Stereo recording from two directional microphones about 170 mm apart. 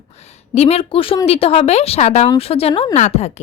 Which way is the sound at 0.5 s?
40° left (ahead or behind).